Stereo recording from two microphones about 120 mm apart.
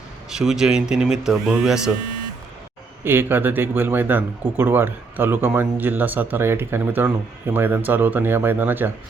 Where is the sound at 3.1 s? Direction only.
15° right (ahead or behind).